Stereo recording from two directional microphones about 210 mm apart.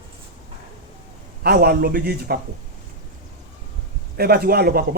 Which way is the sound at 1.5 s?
45° right (ahead or behind).